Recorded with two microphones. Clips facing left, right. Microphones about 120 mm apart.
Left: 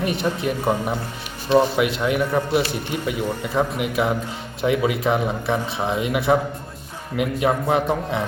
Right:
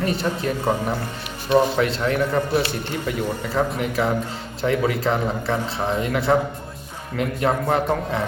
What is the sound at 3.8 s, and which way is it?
A man's voice, 10° left (ahead or behind).